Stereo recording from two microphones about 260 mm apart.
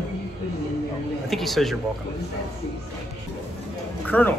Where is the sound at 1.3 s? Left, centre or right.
Centre.